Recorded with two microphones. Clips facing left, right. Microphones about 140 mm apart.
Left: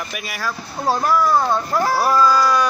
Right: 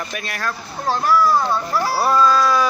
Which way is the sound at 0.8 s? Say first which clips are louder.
Left 1 dB; 40° left (ahead or behind).